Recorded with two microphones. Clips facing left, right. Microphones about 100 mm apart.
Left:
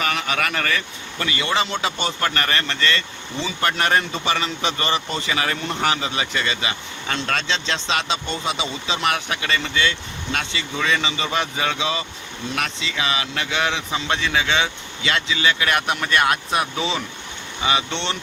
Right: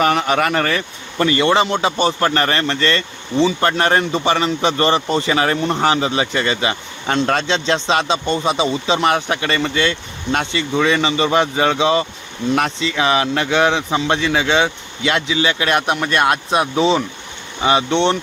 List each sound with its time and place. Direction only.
0.0 s speech: 40° right (ahead or behind)